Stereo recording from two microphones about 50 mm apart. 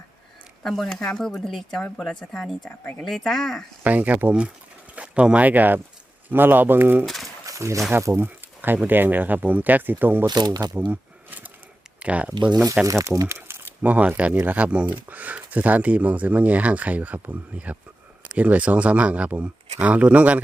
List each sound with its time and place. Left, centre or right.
0.6 s speech: centre
3.8 s speech: right
7.0 s speech: centre
7.5 s speech: right
8.1 s speech: right
10.8 s a sound: right
11.9 s speech: right
12.8 s speech: right
13.8 s speech: right
18.3 s speech: right